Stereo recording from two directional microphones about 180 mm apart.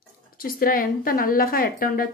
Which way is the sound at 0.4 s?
50° left (ahead or behind).